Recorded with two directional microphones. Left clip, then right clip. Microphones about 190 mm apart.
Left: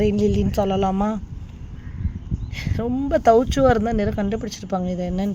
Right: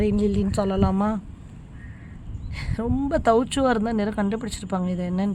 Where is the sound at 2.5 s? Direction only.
10° right (ahead or behind).